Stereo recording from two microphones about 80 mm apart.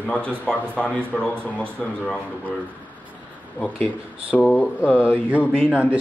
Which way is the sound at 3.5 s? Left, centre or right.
Left.